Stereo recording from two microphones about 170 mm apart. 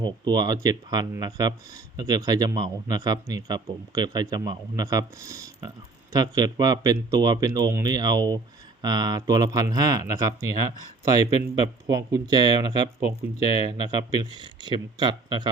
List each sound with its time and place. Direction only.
0.0 s speech: 25° right (ahead or behind)